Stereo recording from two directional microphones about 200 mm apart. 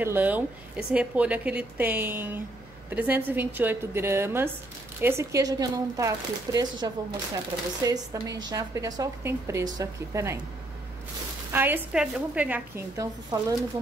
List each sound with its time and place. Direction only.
0.0 s a woman's voice: 10° right (ahead or behind)
11.5 s a woman's voice: 10° right (ahead or behind)